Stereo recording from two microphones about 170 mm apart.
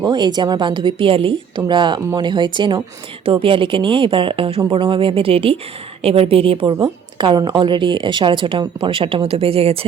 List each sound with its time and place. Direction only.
0.0 s a woman's voice: 25° right (ahead or behind)